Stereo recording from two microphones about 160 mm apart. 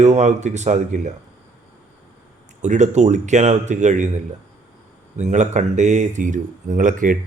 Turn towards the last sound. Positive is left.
turn(degrees=-55)  # may be behind; listen again after turning